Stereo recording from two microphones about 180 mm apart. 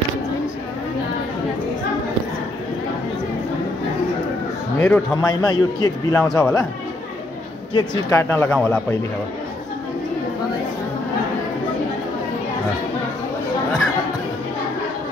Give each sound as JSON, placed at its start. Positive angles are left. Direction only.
{"t": 4.7, "sound": "a man's voice", "side_deg": 15}
{"t": 7.7, "sound": "a man's voice", "side_deg": 25}
{"t": 8.2, "sound": "speech", "side_deg": 10}